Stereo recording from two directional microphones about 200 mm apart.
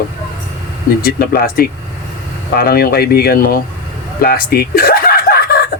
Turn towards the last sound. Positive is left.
turn(degrees=50)  # may be behind; listen again after turning